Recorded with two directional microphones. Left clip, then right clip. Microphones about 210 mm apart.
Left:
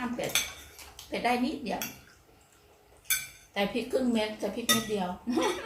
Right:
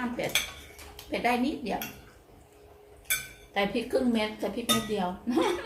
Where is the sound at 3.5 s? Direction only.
15° right (ahead or behind).